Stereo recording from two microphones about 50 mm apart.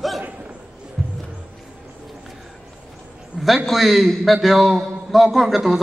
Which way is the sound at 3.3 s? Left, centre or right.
Centre.